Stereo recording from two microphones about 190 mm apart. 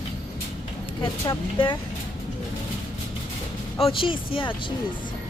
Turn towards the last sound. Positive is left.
turn(degrees=25)  # may be behind; listen again after turning